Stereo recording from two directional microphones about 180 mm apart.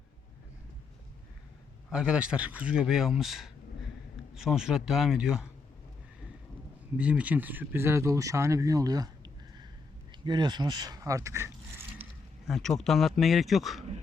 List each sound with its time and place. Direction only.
1.9 s speech: 5° right (ahead or behind)
6.9 s speech: 5° right (ahead or behind)
12.5 s speech: centre (ahead or behind)